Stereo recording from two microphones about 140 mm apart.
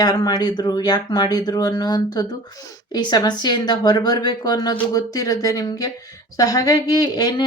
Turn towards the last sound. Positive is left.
turn(degrees=30)  # may be behind; listen again after turning